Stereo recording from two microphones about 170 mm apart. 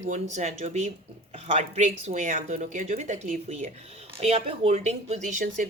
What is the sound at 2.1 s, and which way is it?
Speech, 45° right (ahead or behind).